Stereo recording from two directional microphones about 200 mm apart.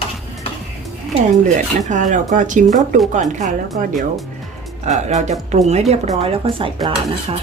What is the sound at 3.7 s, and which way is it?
Speech, 45° right (ahead or behind).